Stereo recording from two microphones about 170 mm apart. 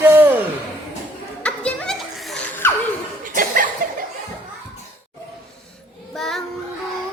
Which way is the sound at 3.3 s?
55° right (ahead or behind).